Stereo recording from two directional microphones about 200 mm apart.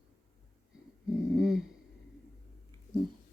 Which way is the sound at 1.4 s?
5° right (ahead or behind).